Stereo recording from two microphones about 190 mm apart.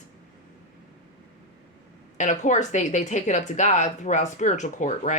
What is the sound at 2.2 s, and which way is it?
Speech, 40° left (ahead or behind).